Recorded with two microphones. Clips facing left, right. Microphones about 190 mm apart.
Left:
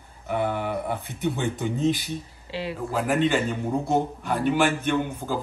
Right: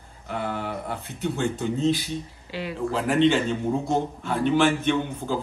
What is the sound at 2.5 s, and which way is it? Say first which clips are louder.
Speech: left 2 dB; 30° left (ahead or behind).